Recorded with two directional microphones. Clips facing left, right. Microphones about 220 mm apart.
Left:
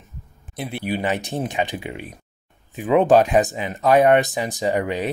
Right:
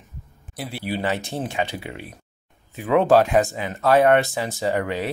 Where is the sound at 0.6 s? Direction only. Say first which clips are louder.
Left 2 dB; 20° left (ahead or behind).